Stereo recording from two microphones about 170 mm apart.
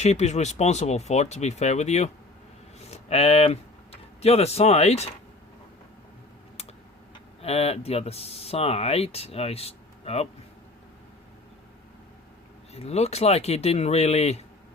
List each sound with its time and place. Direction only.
0.0 s speech: 40° left (ahead or behind)
7.4 s speech: 35° left (ahead or behind)
12.7 s speech: 40° left (ahead or behind)